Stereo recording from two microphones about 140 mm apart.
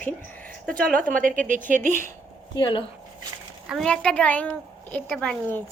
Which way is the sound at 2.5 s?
35° left (ahead or behind).